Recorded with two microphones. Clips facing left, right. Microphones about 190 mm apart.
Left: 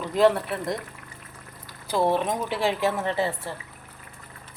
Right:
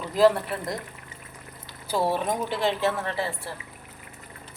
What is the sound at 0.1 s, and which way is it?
Speech, 5° right (ahead or behind).